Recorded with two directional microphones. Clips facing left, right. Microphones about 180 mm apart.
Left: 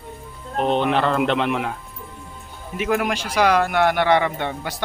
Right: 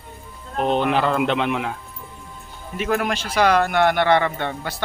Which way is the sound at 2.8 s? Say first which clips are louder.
Left 1 dB; 10° left (ahead or behind).